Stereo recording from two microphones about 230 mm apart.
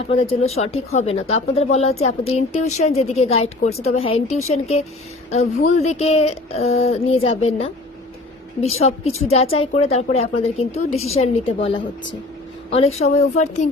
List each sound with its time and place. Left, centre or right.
0.1 s speech: left